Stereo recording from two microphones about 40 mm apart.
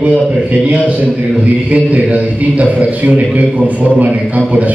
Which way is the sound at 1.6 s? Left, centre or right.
Right.